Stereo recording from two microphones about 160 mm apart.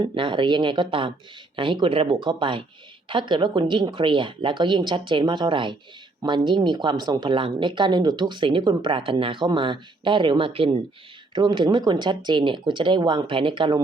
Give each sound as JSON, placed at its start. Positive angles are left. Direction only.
{"t": 0.0, "sound": "speech", "side_deg": -30}